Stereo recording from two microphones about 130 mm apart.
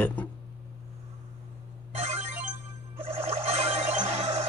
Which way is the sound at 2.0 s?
55° right (ahead or behind).